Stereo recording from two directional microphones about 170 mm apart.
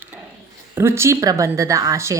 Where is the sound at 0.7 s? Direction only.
15° right (ahead or behind).